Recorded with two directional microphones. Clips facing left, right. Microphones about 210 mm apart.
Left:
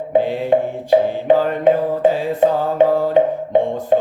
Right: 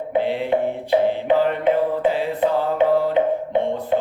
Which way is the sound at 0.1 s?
45° left (ahead or behind).